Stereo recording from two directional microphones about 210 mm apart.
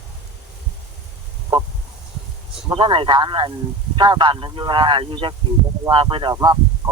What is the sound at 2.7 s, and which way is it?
Speech, 25° right (ahead or behind).